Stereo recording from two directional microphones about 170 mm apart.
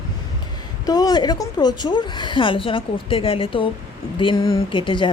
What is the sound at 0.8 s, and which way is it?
A woman's voice, 20° left (ahead or behind).